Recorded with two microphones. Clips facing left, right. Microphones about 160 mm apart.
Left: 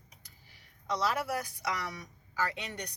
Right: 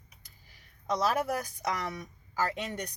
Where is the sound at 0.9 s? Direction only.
45° right (ahead or behind).